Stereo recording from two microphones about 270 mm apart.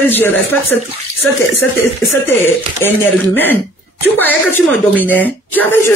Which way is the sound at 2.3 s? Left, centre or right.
Centre.